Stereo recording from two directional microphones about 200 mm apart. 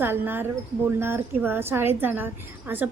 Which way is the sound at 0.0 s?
10° right (ahead or behind).